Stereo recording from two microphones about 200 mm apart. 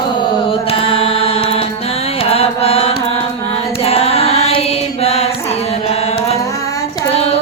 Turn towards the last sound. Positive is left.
turn(degrees=30)  # may be behind; listen again after turning